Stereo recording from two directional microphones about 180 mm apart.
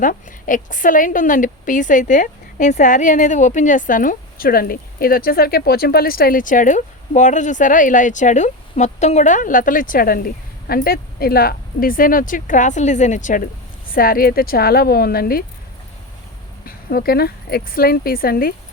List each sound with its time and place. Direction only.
0.0 s a woman's voice: 50° left (ahead or behind)
16.6 s speech: 60° left (ahead or behind)